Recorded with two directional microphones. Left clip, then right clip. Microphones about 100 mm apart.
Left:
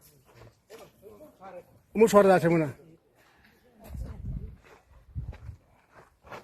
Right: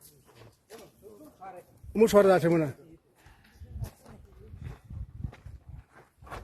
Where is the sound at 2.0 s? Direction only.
20° right (ahead or behind).